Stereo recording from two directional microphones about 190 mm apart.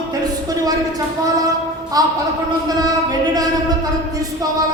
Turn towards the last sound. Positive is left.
turn(degrees=-20)  # may be behind; listen again after turning